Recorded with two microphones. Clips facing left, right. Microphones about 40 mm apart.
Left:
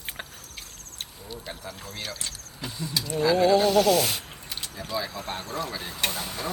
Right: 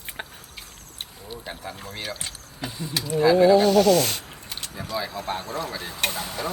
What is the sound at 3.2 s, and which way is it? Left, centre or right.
Speech, centre.